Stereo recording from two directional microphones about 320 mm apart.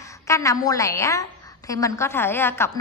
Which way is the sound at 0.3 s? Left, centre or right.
Centre.